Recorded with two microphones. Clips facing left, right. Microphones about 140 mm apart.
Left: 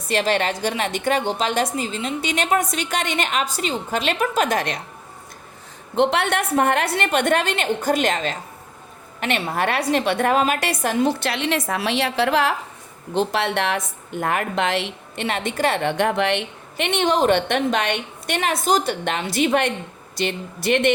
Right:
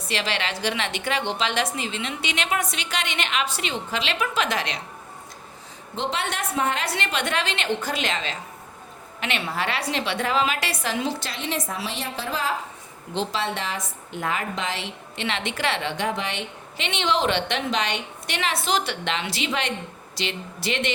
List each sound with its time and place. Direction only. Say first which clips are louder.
0.1 s a woman's voice: left 7 dB; 45° left (ahead or behind)
6.0 s a woman's voice: left 9 dB; 65° left (ahead or behind)